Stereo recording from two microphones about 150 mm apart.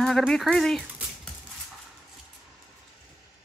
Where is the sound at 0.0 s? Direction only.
Centre (ahead or behind).